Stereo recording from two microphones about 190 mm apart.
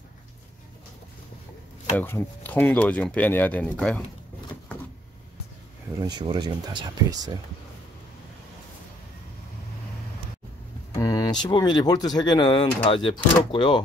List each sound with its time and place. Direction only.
2.0 s speech: 10° left (ahead or behind)
5.9 s speech: 20° right (ahead or behind)
11.0 s speech: 20° left (ahead or behind)